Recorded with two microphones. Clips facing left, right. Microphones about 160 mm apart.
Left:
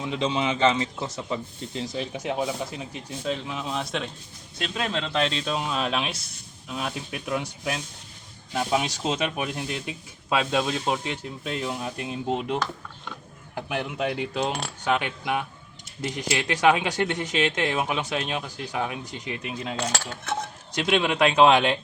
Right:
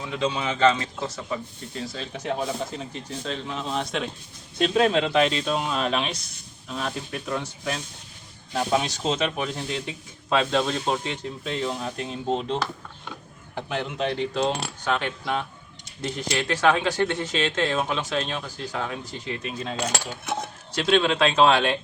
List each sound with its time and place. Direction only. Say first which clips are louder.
0.0 s speech: left 1 dB; 20° left (ahead or behind); by 4.1 s centre (ahead or behind)
4.7 s speech: right 9 dB; 55° right (ahead or behind)
4.9 s speech: right 5 dB; 10° right (ahead or behind); by 12.5 s 10° left (ahead or behind)
13.6 s speech: right 1 dB; 10° left (ahead or behind)
19.9 s cutlery: right 1 dB; 10° right (ahead or behind)
20.7 s speech: right 2 dB; 15° left (ahead or behind)